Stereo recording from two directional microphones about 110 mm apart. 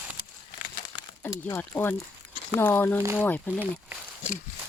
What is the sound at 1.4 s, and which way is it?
Speech, 20° left (ahead or behind).